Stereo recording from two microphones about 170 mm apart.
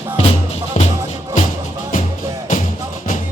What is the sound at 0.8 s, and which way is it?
Music, 45° left (ahead or behind).